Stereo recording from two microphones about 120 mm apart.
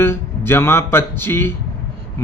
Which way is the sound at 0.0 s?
20° left (ahead or behind).